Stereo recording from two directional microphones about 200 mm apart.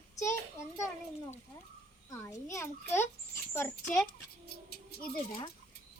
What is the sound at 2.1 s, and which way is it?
Speech, 15° left (ahead or behind).